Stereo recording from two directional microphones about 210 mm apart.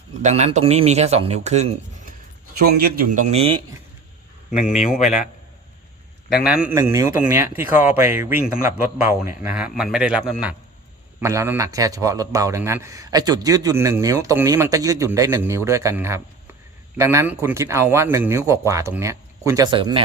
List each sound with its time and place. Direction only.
0.2 s a man's voice: 30° right (ahead or behind)
2.7 s a man's voice: 45° right (ahead or behind)
3.3 s speech: 25° right (ahead or behind)
4.6 s a man's voice: 5° right (ahead or behind)
6.3 s a man's voice: 5° right (ahead or behind); by 20.0 s 20° right (ahead or behind)